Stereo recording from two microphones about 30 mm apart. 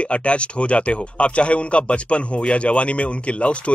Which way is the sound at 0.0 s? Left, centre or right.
Left.